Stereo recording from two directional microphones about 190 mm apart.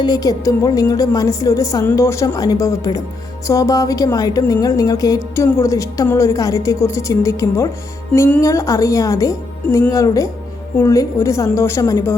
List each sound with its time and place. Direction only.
0.0 s speech: 20° left (ahead or behind)